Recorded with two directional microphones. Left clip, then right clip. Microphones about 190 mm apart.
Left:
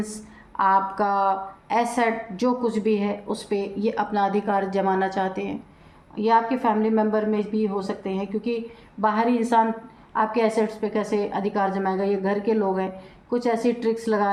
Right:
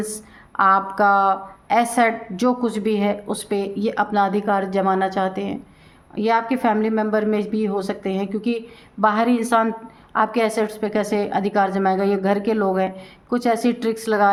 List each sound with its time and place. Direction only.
0.0 s speech: 35° right (ahead or behind)
6.1 s a woman's voice: 45° right (ahead or behind)